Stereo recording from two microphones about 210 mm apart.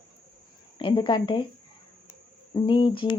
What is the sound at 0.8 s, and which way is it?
Speech, 25° left (ahead or behind).